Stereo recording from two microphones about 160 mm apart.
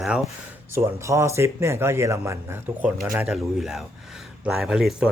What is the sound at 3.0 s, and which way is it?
Speech, 5° right (ahead or behind).